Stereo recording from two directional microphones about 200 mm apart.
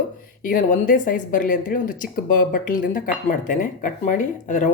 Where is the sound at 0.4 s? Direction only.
40° left (ahead or behind).